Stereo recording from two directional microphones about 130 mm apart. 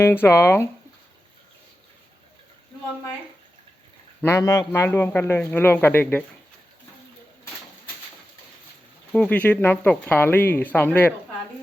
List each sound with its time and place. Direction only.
0.0 s speech: 20° left (ahead or behind)
4.2 s a man's voice: 20° left (ahead or behind)
9.1 s a man's voice: 10° left (ahead or behind)